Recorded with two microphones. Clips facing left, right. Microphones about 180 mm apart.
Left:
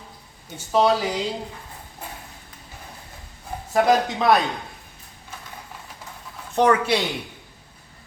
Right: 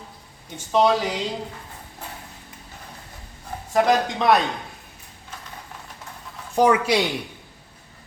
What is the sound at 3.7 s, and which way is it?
Speech, centre (ahead or behind).